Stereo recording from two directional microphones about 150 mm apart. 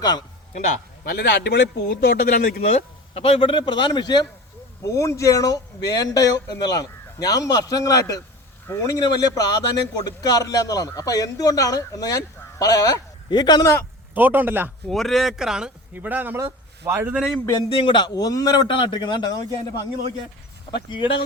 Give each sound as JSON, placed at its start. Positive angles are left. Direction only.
{"t": 1.0, "sound": "a man's voice", "side_deg": 90}
{"t": 14.1, "sound": "speech", "side_deg": -10}
{"t": 14.8, "sound": "speech", "side_deg": 0}
{"t": 17.7, "sound": "a man's voice", "side_deg": 35}
{"t": 20.7, "sound": "speech", "side_deg": 30}